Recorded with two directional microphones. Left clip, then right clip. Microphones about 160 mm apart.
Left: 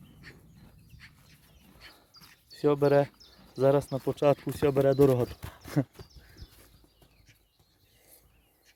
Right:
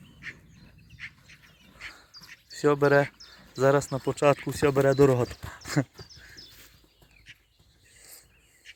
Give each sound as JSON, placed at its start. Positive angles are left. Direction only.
{"t": 0.9, "sound": "duck", "side_deg": 45}
{"t": 2.6, "sound": "speech", "side_deg": 0}
{"t": 5.5, "sound": "a sound", "side_deg": 0}
{"t": 7.3, "sound": "horse", "side_deg": 80}